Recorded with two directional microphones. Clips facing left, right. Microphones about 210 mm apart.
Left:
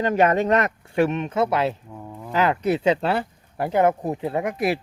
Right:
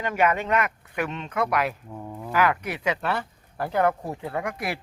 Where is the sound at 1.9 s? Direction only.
5° right (ahead or behind).